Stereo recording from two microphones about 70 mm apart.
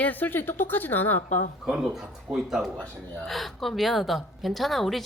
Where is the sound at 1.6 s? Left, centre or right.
Centre.